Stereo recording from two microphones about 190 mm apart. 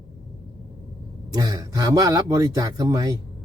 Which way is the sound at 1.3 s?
20° right (ahead or behind).